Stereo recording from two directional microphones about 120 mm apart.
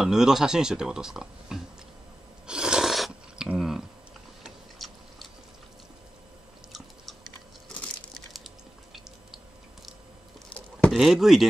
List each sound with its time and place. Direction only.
0.0 s speech: 5° right (ahead or behind)
2.4 s a sound: 5° right (ahead or behind)
4.4 s chewing: centre (ahead or behind)
8.3 s typing: centre (ahead or behind)
10.5 s a sound: 10° left (ahead or behind)
11.0 s speech: centre (ahead or behind)